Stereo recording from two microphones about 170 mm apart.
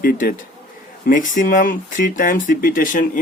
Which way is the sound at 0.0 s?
60° left (ahead or behind).